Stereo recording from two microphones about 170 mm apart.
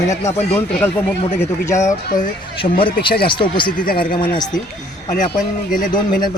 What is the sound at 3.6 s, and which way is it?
Speech, 60° left (ahead or behind).